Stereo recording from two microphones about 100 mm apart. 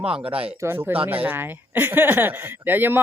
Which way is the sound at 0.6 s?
25° right (ahead or behind).